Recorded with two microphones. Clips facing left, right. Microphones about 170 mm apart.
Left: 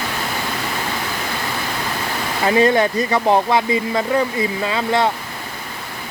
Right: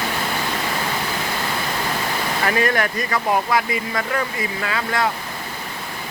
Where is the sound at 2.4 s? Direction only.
20° left (ahead or behind).